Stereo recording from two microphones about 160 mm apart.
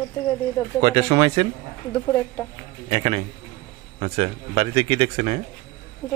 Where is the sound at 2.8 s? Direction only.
35° right (ahead or behind).